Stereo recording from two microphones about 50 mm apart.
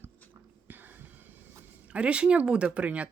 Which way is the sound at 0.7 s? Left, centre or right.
Right.